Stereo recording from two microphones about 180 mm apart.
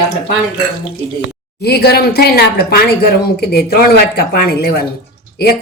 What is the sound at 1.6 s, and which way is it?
Speech, 65° left (ahead or behind).